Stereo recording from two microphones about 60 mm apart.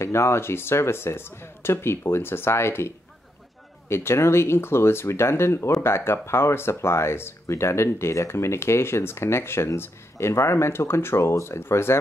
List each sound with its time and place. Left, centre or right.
0.0 s speech: left
3.9 s speech: left